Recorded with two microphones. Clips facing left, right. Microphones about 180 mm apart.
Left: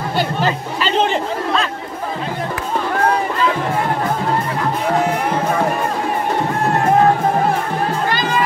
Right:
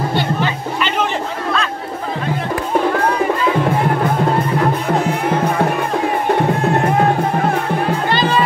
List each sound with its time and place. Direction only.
0.4 s music: 35° left (ahead or behind)
8.1 s music: 30° right (ahead or behind)